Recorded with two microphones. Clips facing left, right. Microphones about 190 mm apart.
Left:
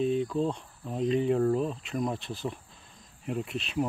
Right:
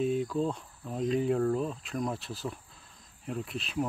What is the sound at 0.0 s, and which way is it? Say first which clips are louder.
Speech: left 2 dB; 5° right (ahead or behind).